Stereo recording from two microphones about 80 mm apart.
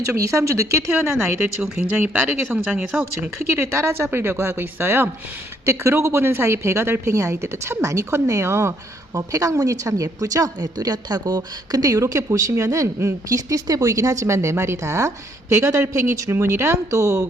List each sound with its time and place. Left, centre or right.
0.1 s a woman's voice: right
2.5 s speech: centre
3.2 s a woman's voice: right